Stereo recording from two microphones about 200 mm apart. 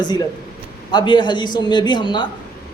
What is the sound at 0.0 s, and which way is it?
A man's voice, 20° left (ahead or behind).